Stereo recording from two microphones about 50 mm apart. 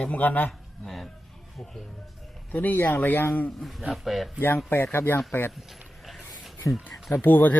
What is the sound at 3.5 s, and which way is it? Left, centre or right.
Speech, centre.